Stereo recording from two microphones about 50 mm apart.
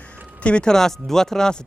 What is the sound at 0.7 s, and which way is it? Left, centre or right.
Speech, centre.